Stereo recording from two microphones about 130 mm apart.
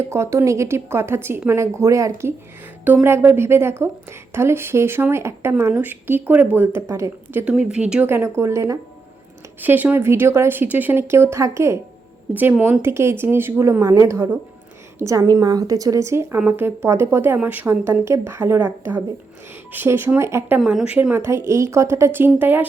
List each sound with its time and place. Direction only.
0.0 s a woman's voice: 20° right (ahead or behind)
7.4 s a woman's voice: 10° right (ahead or behind)
20.6 s a woman's voice: 5° right (ahead or behind)